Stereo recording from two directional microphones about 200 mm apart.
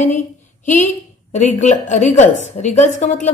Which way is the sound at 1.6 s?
35° left (ahead or behind).